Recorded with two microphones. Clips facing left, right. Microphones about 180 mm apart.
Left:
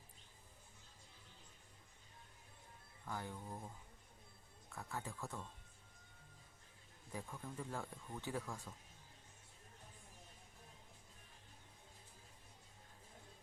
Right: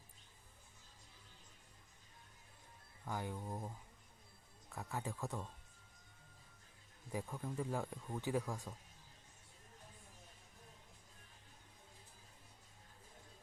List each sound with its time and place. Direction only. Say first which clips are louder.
3.1 s speech: right 4 dB; 15° right (ahead or behind)
4.7 s speech: right 3 dB; 20° right (ahead or behind)
7.1 s speech: right 5 dB; 15° right (ahead or behind)